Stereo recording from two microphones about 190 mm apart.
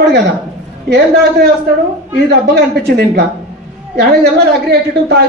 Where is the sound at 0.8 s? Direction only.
60° right (ahead or behind).